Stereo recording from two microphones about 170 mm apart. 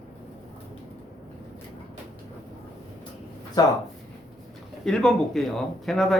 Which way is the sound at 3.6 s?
20° left (ahead or behind).